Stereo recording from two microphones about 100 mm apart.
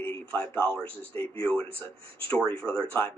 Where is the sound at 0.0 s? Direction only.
15° left (ahead or behind).